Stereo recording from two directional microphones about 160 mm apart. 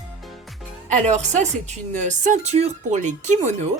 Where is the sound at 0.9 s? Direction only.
45° right (ahead or behind).